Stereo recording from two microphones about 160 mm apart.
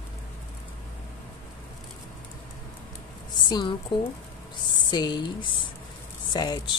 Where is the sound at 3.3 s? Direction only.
25° left (ahead or behind).